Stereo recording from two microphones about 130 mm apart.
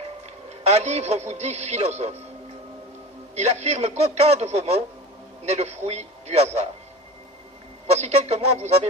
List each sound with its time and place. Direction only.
0.5 s a man's voice: 55° right (ahead or behind)
3.3 s a man's voice: 60° right (ahead or behind)
7.8 s a man's voice: 55° right (ahead or behind)